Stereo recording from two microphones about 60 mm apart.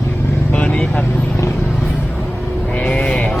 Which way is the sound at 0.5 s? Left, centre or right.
Left.